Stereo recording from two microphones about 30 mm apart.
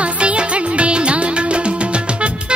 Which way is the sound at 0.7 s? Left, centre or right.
Right.